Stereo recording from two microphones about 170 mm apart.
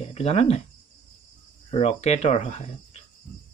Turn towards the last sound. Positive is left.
turn(degrees=40)  # may be behind; listen again after turning